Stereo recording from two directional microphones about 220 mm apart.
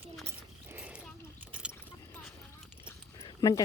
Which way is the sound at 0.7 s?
5° right (ahead or behind).